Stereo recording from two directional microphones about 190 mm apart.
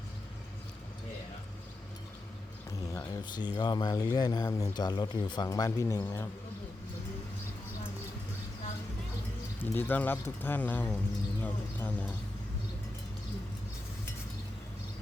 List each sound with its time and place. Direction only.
2.6 s speech: 15° left (ahead or behind)
9.6 s speech: 10° left (ahead or behind)
11.4 s a sound: 10° left (ahead or behind)